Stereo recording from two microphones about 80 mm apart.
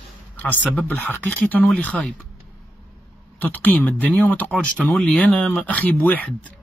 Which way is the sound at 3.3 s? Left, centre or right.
Left.